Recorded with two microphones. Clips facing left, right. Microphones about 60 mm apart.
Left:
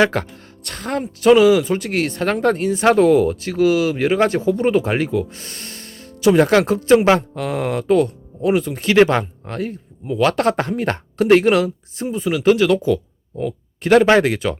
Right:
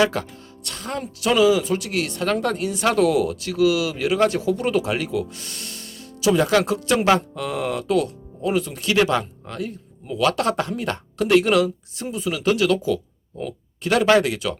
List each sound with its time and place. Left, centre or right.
0.0 s speech: left
7.3 s speech: left